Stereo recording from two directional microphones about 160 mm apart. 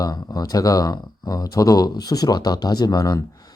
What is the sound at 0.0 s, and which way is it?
Speech, 25° left (ahead or behind).